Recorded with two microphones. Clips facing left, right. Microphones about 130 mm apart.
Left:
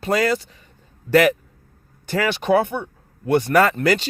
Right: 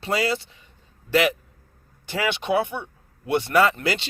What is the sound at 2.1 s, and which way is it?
Speech, 40° left (ahead or behind).